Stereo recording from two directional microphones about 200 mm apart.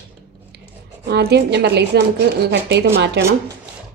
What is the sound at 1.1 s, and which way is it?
A woman's voice, 55° right (ahead or behind).